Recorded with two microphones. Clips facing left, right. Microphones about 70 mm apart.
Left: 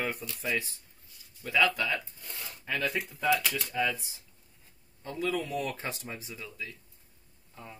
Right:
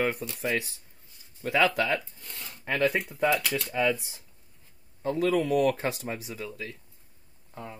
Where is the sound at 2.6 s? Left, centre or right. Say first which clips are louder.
Right 6 dB; right.